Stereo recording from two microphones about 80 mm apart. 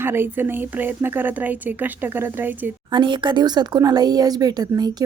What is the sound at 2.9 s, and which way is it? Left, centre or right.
Speech, right.